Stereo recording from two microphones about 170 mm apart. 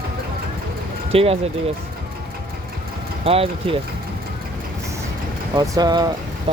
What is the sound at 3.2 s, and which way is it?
Speech, 35° right (ahead or behind).